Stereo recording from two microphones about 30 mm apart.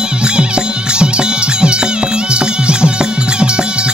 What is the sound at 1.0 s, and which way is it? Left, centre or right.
Music, right.